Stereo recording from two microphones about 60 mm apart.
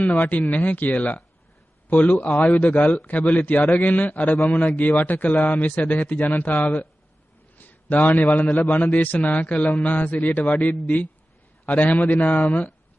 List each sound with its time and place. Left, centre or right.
0.0 s a man's voice: left